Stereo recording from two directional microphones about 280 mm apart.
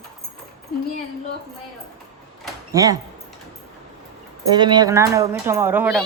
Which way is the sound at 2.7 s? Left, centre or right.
Centre.